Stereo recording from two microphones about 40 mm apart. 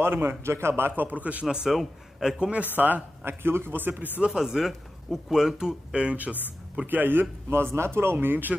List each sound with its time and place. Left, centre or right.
0.0 s speech: right
1.0 s a man's voice: right
1.4 s a man's voice: right
1.7 s a man's voice: centre
2.3 s a man's voice: right
2.7 s speech: right
3.3 s a man's voice: right
4.3 s speech: centre
6.9 s a man's voice: right